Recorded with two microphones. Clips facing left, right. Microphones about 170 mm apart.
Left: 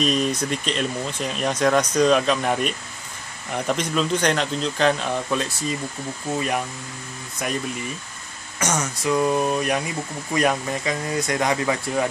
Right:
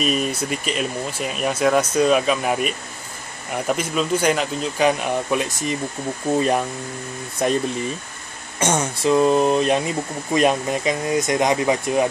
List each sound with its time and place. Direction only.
0.0 s speech: 5° right (ahead or behind)
7.4 s speech: 30° right (ahead or behind)